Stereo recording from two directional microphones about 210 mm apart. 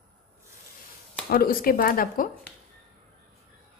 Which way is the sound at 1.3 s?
45° left (ahead or behind).